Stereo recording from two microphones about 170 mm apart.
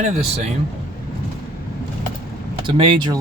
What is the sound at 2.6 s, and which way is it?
Speech, 30° right (ahead or behind).